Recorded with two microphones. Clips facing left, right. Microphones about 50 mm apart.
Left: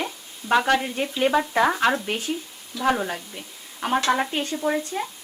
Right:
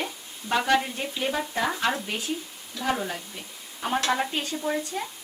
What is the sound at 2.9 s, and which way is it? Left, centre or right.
Stir, left.